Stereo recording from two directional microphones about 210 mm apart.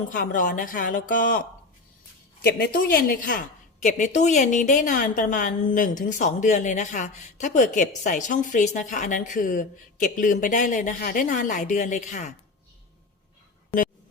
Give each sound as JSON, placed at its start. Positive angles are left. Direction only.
{"t": 0.1, "sound": "a woman's voice", "side_deg": 40}